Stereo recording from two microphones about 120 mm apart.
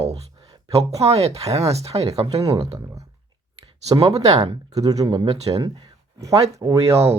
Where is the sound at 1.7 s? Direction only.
60° right (ahead or behind).